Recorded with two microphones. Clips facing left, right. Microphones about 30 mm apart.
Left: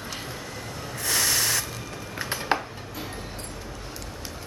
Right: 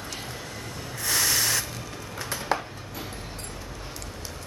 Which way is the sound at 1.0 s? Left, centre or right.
Centre.